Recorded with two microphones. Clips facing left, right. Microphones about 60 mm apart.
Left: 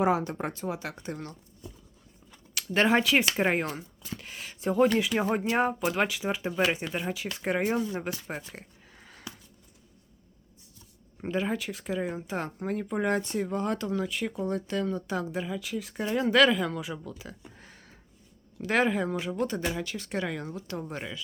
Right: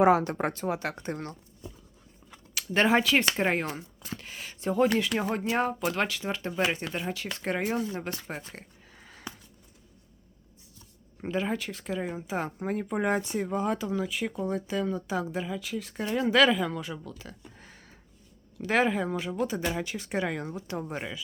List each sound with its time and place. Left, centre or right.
0.0 s speech: right
2.6 s speech: centre
8.5 s a sound: centre
11.2 s speech: centre
17.5 s a sound: centre
18.6 s speech: centre
19.7 s speech: right